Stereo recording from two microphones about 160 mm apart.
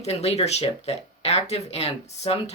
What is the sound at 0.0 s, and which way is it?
Speech, 40° left (ahead or behind).